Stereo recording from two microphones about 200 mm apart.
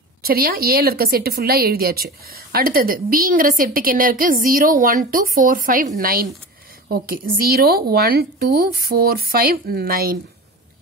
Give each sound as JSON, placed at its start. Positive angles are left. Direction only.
{"t": 0.2, "sound": "a woman's voice", "side_deg": -50}